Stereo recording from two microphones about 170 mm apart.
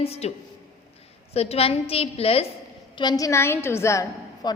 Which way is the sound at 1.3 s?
35° left (ahead or behind).